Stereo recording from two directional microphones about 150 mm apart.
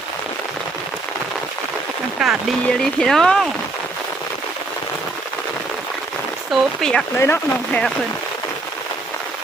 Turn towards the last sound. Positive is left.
turn(degrees=15)  # may be behind; listen again after turning